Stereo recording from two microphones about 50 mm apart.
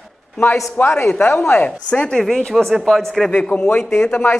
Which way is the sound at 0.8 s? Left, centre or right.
Left.